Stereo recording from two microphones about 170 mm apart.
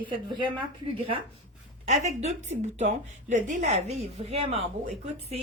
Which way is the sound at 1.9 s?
40° right (ahead or behind).